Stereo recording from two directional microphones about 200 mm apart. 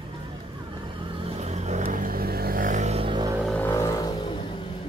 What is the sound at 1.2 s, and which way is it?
Vehicle, 35° right (ahead or behind).